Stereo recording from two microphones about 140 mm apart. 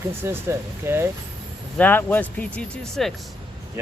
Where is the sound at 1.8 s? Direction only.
15° left (ahead or behind).